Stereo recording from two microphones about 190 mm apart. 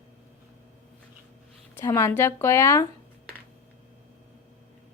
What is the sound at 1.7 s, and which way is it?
Speech, 15° left (ahead or behind).